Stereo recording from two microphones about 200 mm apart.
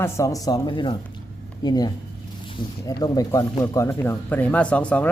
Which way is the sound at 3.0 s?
15° left (ahead or behind).